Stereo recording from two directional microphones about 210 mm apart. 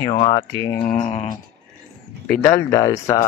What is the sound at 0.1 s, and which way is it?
Speech, 25° left (ahead or behind).